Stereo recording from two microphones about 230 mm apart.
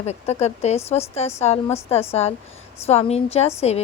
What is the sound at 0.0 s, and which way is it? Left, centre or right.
A woman's voice, left.